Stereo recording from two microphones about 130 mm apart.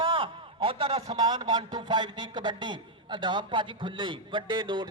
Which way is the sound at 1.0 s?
35° right (ahead or behind).